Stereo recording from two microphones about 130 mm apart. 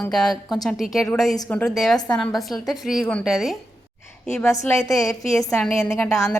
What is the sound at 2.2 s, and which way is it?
Speech, centre (ahead or behind).